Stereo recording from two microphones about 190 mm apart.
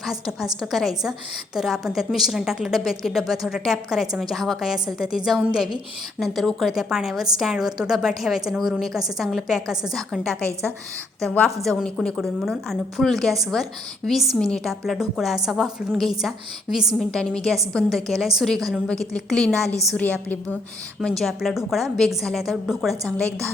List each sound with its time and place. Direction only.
0.0 s a woman's voice: centre (ahead or behind)
19.5 s a woman's voice: 15° right (ahead or behind)
19.9 s a woman's voice: 5° left (ahead or behind)